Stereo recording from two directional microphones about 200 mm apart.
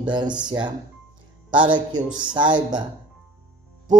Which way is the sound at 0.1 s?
20° right (ahead or behind).